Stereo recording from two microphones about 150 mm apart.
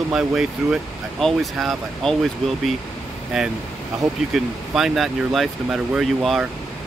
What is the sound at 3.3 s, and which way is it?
Speech, centre (ahead or behind).